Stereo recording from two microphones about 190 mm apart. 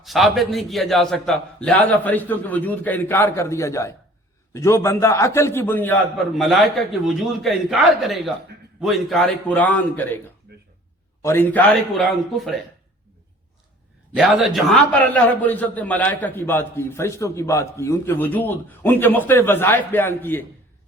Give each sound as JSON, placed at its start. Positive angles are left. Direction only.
{"t": 0.0, "sound": "a man's voice", "side_deg": 0}
{"t": 6.3, "sound": "a man's voice", "side_deg": 0}
{"t": 10.5, "sound": "a sound", "side_deg": -60}
{"t": 11.2, "sound": "a man's voice", "side_deg": 10}
{"t": 14.2, "sound": "a man's voice", "side_deg": 0}